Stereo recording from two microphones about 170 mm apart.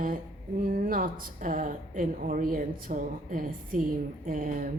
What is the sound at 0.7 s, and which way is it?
A woman's voice, 55° right (ahead or behind).